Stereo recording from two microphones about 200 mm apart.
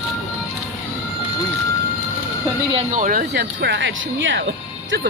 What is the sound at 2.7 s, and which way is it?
Speech, 35° right (ahead or behind).